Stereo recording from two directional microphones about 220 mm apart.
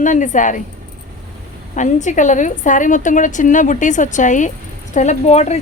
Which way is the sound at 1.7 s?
35° left (ahead or behind).